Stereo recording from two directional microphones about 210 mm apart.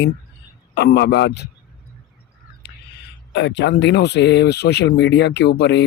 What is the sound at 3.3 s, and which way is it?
Speech, 55° left (ahead or behind).